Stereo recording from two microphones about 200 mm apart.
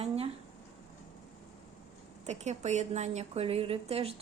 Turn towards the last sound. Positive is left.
turn(degrees=-30)  # may be behind; listen again after turning